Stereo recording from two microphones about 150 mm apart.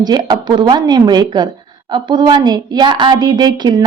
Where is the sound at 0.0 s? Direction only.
30° right (ahead or behind).